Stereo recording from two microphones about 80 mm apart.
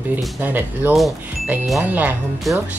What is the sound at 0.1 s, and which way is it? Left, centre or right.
Speech, right.